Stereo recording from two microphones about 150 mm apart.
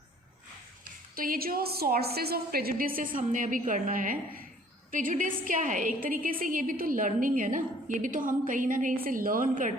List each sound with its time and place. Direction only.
1.1 s a woman's voice: 75° right (ahead or behind)